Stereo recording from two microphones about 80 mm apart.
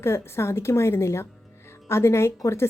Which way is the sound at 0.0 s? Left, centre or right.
Left.